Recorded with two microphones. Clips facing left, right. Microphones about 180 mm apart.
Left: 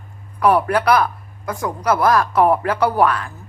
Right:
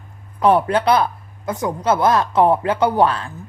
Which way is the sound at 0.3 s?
25° right (ahead or behind).